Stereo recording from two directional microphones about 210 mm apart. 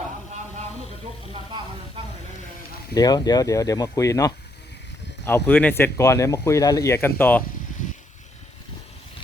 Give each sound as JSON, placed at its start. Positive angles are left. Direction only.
{"t": 2.9, "sound": "speech", "side_deg": 20}